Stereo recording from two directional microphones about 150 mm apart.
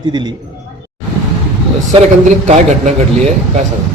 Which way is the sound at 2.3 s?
50° right (ahead or behind).